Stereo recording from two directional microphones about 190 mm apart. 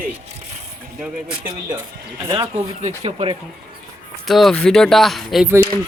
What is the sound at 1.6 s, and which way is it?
Speech, 15° right (ahead or behind).